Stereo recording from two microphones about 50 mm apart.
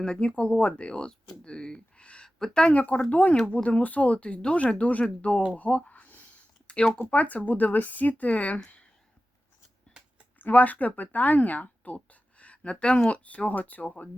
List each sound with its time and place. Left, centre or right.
0.0 s speech: left
2.7 s speech: left
5.9 s a sound: left
6.7 s speech: centre
7.1 s speech: left
10.3 s speech: left